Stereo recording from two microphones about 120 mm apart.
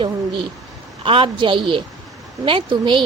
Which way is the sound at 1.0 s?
45° right (ahead or behind).